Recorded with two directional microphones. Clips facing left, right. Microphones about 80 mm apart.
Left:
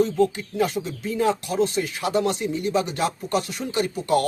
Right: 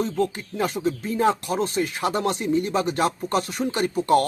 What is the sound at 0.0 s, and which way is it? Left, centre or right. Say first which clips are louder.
Speech: left 4 dB; right.